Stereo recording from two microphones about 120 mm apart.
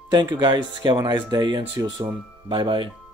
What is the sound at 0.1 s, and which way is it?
Speech, 35° right (ahead or behind).